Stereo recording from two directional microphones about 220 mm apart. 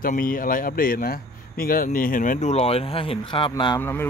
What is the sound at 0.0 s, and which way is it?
A man's voice, 40° left (ahead or behind).